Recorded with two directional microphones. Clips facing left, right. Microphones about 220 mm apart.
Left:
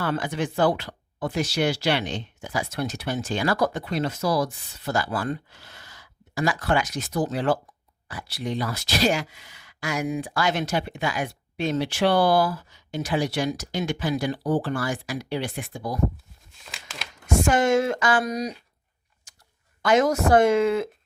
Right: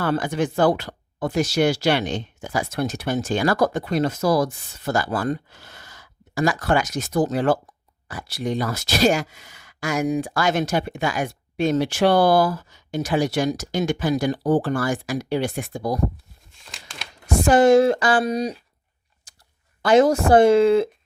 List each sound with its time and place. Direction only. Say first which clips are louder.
0.0 s speech: right 4 dB; 45° right (ahead or behind)
16.5 s crumpling: left 1 dB; centre (ahead or behind)
17.2 s speech: right 6 dB; 35° right (ahead or behind)
19.3 s a sound: right 2 dB; 35° right (ahead or behind)
19.8 s speech: right 4 dB; 30° right (ahead or behind)